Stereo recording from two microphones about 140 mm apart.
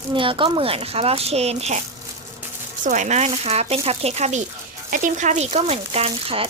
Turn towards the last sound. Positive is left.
turn(degrees=-45)  # may be behind; listen again after turning